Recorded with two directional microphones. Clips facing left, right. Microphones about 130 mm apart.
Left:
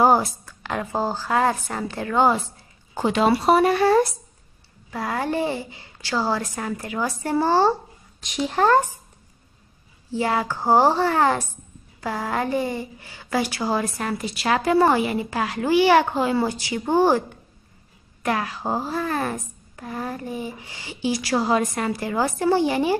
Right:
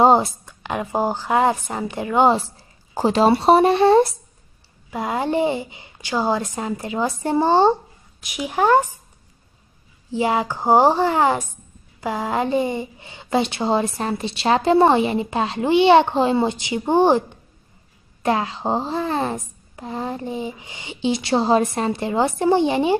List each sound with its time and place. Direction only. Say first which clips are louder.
0.0 s a sound: right 3 dB; 25° right (ahead or behind)
0.5 s a woman's voice: right 2 dB; 20° right (ahead or behind)
2.9 s a woman's voice: right 3 dB; 35° right (ahead or behind); by 8.8 s 15° right (ahead or behind)
10.1 s a woman's voice: right 3 dB; 20° right (ahead or behind)